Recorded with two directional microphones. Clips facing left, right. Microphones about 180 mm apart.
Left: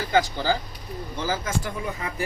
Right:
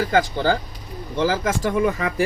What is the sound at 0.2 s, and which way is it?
Speech, 55° right (ahead or behind).